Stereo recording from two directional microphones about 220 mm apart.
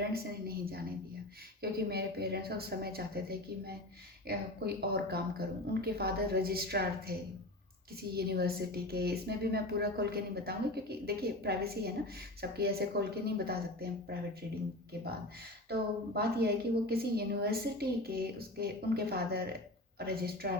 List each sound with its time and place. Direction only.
0.1 s a sound: 45° right (ahead or behind)
1.9 s speech: 45° right (ahead or behind)
15.7 s speech: 45° right (ahead or behind)